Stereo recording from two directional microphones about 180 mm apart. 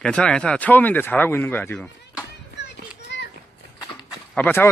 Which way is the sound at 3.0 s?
75° left (ahead or behind).